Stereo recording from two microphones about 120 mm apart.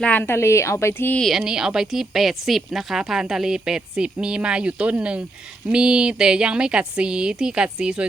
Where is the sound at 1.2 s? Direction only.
Centre (ahead or behind).